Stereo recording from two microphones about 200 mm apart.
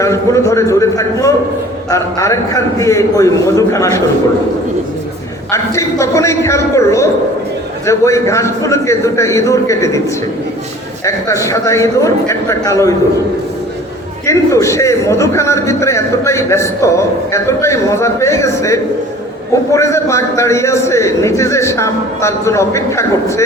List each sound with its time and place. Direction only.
0.0 s a man's voice: 15° left (ahead or behind)
5.5 s a man's voice: 15° left (ahead or behind)
11.0 s a man's voice: 15° left (ahead or behind)
14.3 s a man's voice: 15° left (ahead or behind)